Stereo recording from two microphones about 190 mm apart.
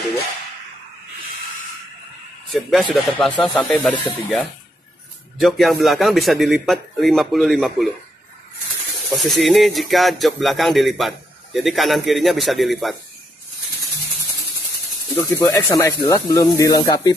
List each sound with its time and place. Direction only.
2.5 s speech: centre (ahead or behind)
9.1 s speech: centre (ahead or behind)
15.2 s speech: 15° left (ahead or behind)